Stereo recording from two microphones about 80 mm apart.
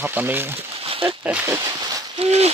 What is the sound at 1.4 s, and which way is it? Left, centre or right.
Speech, right.